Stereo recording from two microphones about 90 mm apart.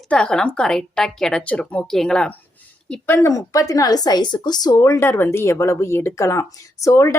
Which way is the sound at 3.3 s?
40° left (ahead or behind).